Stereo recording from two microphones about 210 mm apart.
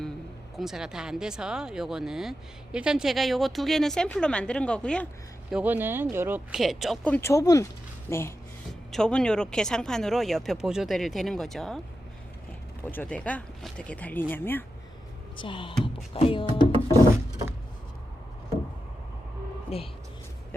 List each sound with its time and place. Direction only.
0.5 s speech: centre (ahead or behind)
5.5 s speech: 5° right (ahead or behind)
12.8 s speech: 10° left (ahead or behind)
15.4 s speech: 25° left (ahead or behind)
19.7 s speech: 30° left (ahead or behind)